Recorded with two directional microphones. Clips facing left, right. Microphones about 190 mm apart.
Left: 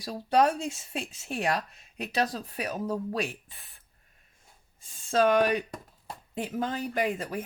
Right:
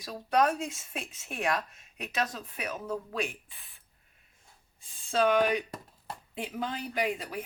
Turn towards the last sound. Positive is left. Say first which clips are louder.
# left 3 dB
turn(degrees=45)  # may be behind; listen again after turning